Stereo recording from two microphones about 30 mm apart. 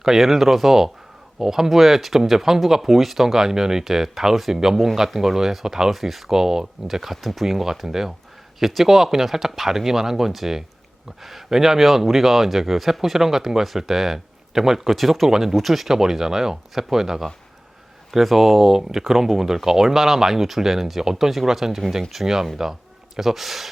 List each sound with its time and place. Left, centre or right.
0.2 s speech: centre
4.4 s speech: centre
4.6 s speech: centre
5.9 s speech: centre
6.3 s speech: centre
6.9 s speech: centre
14.8 s speech: centre
15.3 s speech: centre
15.5 s speech: centre